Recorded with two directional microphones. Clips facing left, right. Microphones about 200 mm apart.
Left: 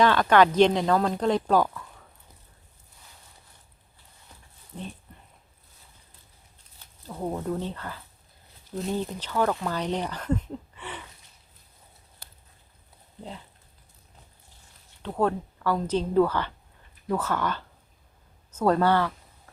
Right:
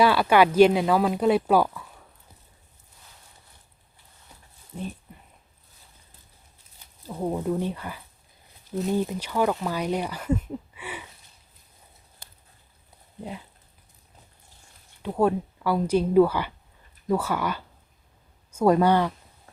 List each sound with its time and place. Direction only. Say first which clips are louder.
0.0 s speech: right 1 dB; 10° right (ahead or behind)
4.7 s speech: right 4 dB; 10° right (ahead or behind)
6.7 s speech: right 3 dB; 10° right (ahead or behind)
15.0 s speech: right 3 dB; 10° right (ahead or behind)